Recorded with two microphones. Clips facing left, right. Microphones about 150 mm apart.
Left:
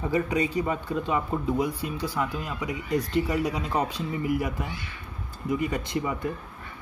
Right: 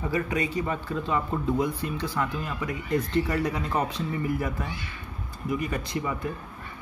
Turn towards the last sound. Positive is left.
turn(degrees=20)  # may be behind; listen again after turning